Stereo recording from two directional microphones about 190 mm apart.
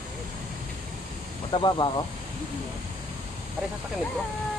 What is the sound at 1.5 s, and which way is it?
Speech, 25° left (ahead or behind).